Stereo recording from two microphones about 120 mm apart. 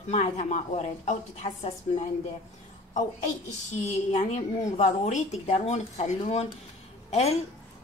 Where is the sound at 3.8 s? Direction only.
75° left (ahead or behind).